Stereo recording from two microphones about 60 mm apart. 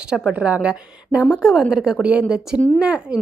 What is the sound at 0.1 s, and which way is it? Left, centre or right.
A woman's voice, centre.